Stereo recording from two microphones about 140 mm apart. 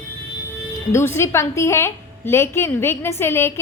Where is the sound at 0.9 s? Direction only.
20° left (ahead or behind).